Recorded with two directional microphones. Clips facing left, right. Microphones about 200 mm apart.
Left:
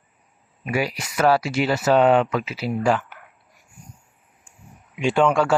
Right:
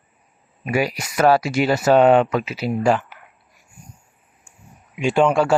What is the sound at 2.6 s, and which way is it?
Mantra, 15° right (ahead or behind).